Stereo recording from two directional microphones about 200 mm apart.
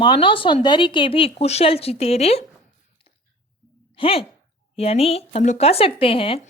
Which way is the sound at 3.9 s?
25° left (ahead or behind).